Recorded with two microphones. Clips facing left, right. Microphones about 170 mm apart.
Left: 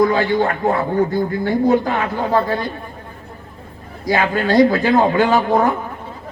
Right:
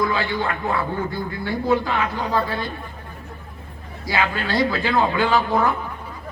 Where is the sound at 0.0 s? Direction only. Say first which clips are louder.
Left 7 dB; 45° left (ahead or behind).